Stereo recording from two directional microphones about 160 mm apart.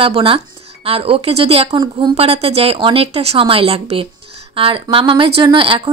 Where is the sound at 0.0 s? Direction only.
35° right (ahead or behind).